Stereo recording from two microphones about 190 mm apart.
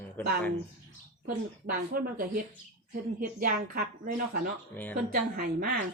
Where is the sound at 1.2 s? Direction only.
50° right (ahead or behind).